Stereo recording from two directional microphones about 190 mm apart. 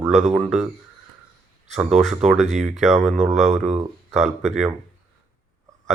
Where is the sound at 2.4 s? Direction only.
40° right (ahead or behind).